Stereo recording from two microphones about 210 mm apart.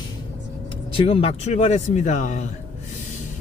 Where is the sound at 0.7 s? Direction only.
25° left (ahead or behind).